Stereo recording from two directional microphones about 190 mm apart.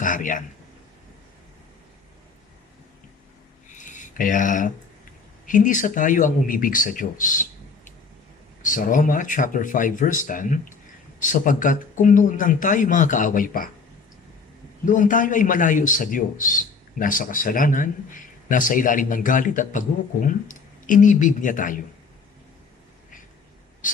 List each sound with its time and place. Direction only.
0.0 s a man's voice: 45° left (ahead or behind)
3.7 s a sound: 40° left (ahead or behind)
5.5 s a man's voice: 45° left (ahead or behind)
8.6 s a man's voice: 45° left (ahead or behind)
14.9 s a man's voice: 45° left (ahead or behind)